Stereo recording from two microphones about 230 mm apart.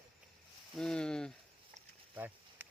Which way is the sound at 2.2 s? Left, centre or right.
Centre.